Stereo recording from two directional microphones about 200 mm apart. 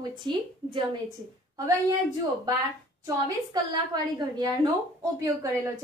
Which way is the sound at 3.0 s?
20° right (ahead or behind).